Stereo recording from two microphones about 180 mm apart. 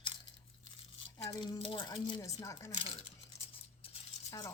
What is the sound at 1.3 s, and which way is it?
Speech, 30° left (ahead or behind).